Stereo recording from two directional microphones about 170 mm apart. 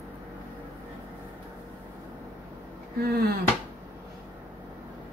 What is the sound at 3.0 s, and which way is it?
Speech, 65° right (ahead or behind).